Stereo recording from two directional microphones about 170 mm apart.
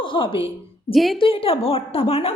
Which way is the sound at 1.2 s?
30° left (ahead or behind).